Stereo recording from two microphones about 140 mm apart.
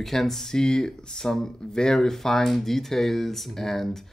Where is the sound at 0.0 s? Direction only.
Centre (ahead or behind).